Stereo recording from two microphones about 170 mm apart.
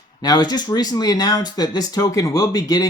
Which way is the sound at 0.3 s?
25° left (ahead or behind).